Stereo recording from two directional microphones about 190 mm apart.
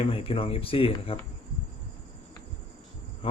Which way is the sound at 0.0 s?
30° left (ahead or behind).